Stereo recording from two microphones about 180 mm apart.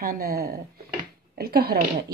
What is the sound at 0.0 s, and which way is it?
Speech, 55° right (ahead or behind).